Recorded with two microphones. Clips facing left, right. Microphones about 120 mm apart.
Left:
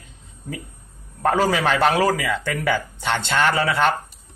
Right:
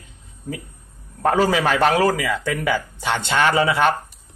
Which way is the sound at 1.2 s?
5° right (ahead or behind).